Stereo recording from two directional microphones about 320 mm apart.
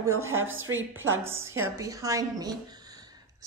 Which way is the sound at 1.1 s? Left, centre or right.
Centre.